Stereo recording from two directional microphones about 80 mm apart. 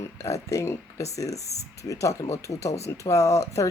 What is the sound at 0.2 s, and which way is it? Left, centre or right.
Speech, left.